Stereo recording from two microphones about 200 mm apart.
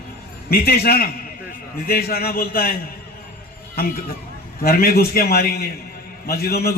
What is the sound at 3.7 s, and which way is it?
A man's voice, 50° left (ahead or behind).